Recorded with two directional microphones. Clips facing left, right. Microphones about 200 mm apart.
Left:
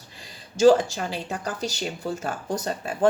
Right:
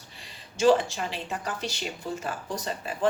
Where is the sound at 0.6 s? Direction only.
40° left (ahead or behind).